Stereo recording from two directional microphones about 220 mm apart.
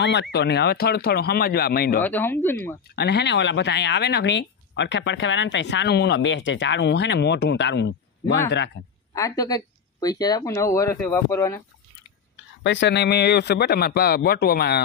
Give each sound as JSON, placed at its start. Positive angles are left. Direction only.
{"t": 0.0, "sound": "speech", "side_deg": 50}
{"t": 2.0, "sound": "speech", "side_deg": 10}
{"t": 3.0, "sound": "speech", "side_deg": 50}
{"t": 9.1, "sound": "speech", "side_deg": 15}
{"t": 12.6, "sound": "speech", "side_deg": 55}